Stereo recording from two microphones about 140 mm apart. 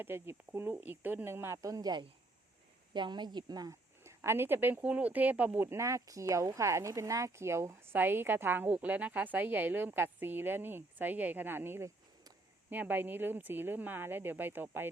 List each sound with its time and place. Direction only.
0.0 s a woman's voice: 15° right (ahead or behind)